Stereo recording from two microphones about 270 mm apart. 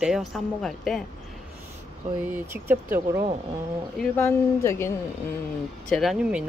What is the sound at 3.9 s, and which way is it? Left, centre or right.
A woman's voice, centre.